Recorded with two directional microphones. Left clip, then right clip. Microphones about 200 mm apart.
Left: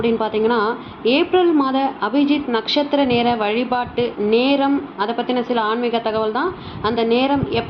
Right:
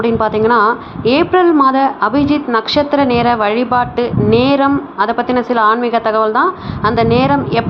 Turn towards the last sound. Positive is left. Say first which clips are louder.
# right 6 dB
turn(degrees=-20)  # may be behind; listen again after turning